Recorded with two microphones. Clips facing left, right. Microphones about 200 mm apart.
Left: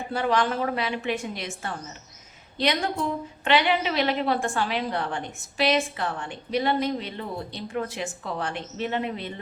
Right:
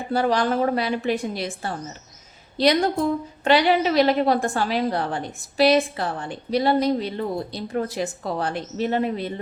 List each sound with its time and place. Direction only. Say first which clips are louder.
0.1 s a woman's voice: right 4 dB; 35° right (ahead or behind)